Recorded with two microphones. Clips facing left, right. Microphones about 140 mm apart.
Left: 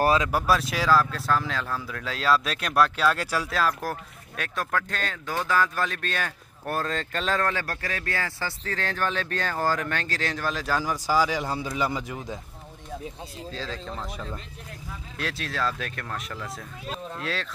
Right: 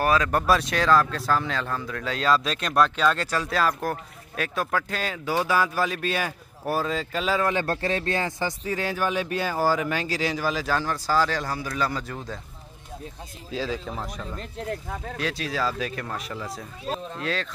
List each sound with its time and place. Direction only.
0.3 s speech: 5° left (ahead or behind)
7.5 s speech: 25° right (ahead or behind); by 10.8 s 5° right (ahead or behind)
10.8 s speech: 10° left (ahead or behind)
13.5 s speech: 10° right (ahead or behind)
14.7 s speech: 65° right (ahead or behind)
15.1 s speech: centre (ahead or behind)